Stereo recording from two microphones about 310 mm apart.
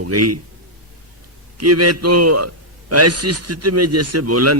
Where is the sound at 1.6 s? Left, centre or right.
Right.